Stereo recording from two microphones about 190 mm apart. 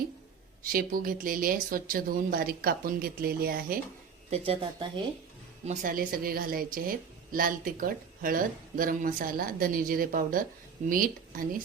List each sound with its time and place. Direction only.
0.6 s speech: 50° right (ahead or behind)
4.3 s speech: 30° right (ahead or behind)
5.6 s speech: 45° right (ahead or behind)